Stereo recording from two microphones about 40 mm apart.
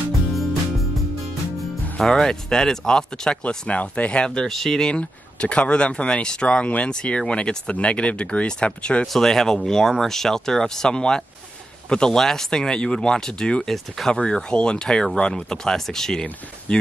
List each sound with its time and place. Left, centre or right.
0.3 s music: centre
2.0 s speech: centre
3.4 s speech: left
4.5 s speech: centre
4.9 s speech: left
9.0 s speech: centre
12.2 s speech: centre
13.7 s speech: centre
14.1 s speech: left